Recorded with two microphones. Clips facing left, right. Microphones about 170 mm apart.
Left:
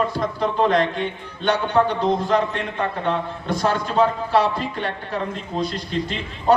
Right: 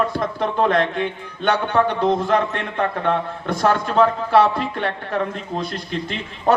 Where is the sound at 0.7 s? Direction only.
55° right (ahead or behind).